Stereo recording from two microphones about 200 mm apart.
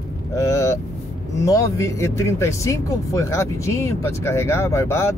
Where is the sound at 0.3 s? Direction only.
15° left (ahead or behind).